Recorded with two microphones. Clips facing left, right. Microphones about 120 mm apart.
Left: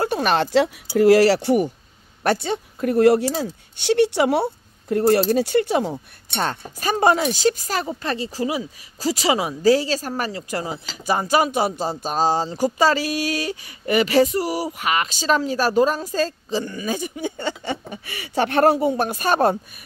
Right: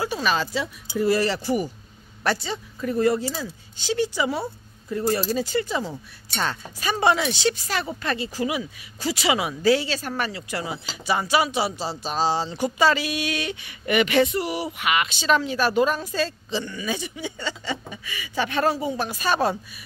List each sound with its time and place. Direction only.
0.0 s speech: 55° left (ahead or behind); by 0.7 s 70° left (ahead or behind)
0.9 s speech: 90° left; by 5.9 s 60° left (ahead or behind)
6.4 s speech: 45° left (ahead or behind)